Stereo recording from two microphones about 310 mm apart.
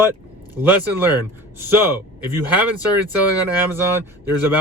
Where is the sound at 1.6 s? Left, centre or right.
Centre.